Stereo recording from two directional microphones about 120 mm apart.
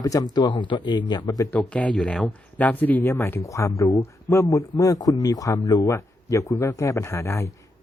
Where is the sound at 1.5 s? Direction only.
10° left (ahead or behind).